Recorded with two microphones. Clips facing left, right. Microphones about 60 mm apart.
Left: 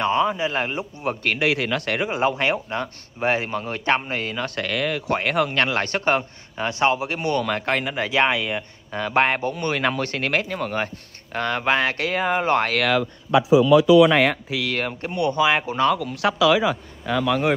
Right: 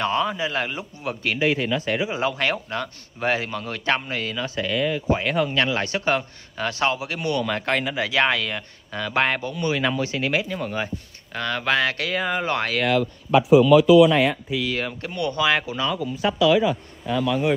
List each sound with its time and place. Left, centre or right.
0.0 s speech: left
1.2 s speech: left
1.5 s speech: left
2.0 s speech: left
4.6 s speech: left
6.1 s speech: left
8.9 s speech: left
9.5 s speech: left
11.3 s speech: left
14.2 s speech: left
14.8 s speech: left
15.0 s speech: left
15.6 s speech: left
15.9 s speech: left